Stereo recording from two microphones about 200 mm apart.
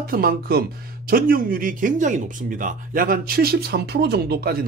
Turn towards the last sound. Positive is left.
turn(degrees=-50)  # may be behind; listen again after turning